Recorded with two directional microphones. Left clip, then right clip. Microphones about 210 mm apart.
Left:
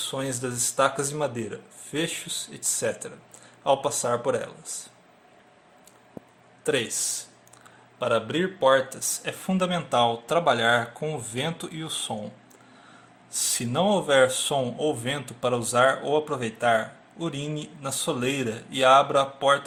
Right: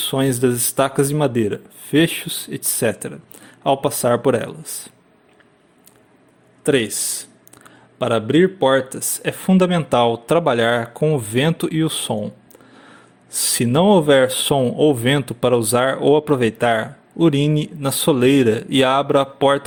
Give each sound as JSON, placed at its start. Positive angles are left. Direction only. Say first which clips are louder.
{"t": 0.0, "sound": "speech", "louder": "right 12 dB", "side_deg": -35}
{"t": 6.7, "sound": "speech", "louder": "right 8 dB", "side_deg": -35}
{"t": 13.5, "sound": "speech", "louder": "right 9 dB", "side_deg": -35}